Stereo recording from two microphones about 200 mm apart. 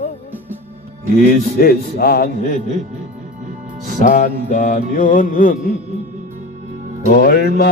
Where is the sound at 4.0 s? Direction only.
40° left (ahead or behind).